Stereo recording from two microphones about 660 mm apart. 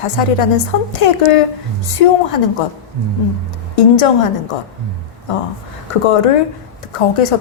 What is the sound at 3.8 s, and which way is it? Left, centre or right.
Speech, left.